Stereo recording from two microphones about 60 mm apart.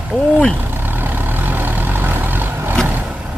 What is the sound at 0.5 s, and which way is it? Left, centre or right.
Vehicle, right.